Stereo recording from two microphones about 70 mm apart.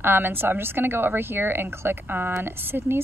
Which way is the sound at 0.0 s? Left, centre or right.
Right.